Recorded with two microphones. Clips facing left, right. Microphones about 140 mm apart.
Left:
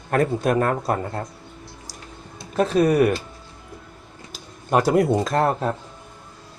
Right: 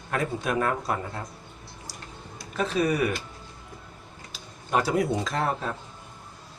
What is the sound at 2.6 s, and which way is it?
Speech, 45° left (ahead or behind).